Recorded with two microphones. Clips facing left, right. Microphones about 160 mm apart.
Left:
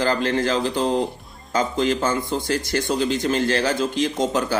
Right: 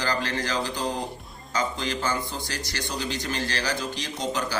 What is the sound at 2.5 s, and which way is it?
A man's voice, 50° left (ahead or behind).